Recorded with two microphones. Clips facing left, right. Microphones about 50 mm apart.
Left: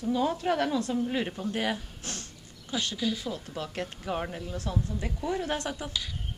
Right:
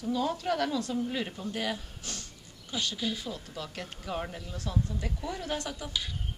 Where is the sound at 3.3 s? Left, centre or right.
Left.